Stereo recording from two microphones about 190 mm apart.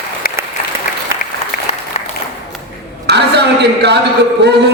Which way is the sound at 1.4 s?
35° left (ahead or behind).